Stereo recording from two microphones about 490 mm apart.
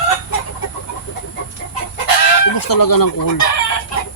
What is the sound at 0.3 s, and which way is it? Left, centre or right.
Chicken, left.